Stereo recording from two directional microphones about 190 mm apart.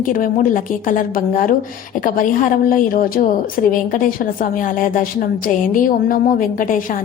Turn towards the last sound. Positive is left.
turn(degrees=45)  # may be behind; listen again after turning